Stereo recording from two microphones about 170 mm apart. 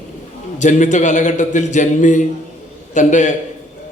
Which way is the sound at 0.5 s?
45° left (ahead or behind).